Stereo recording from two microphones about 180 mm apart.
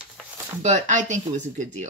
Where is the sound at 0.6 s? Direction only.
40° right (ahead or behind).